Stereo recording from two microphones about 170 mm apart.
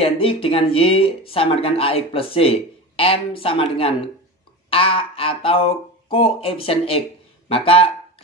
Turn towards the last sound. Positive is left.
turn(degrees=35)  # may be behind; listen again after turning